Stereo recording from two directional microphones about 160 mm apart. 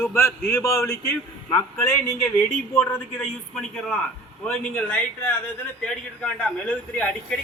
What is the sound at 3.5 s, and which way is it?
A man's voice, 5° left (ahead or behind).